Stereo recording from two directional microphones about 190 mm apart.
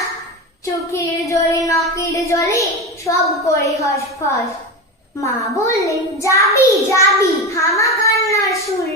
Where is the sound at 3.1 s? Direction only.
15° left (ahead or behind).